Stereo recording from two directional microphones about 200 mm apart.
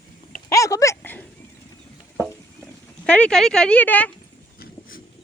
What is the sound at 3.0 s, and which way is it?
Speech, 5° left (ahead or behind).